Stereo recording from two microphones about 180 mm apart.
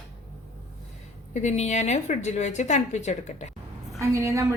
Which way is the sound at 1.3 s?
40° left (ahead or behind).